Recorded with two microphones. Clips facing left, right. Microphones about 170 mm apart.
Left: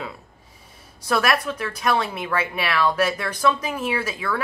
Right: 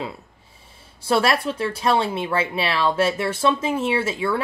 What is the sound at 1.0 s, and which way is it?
Speech, 30° right (ahead or behind).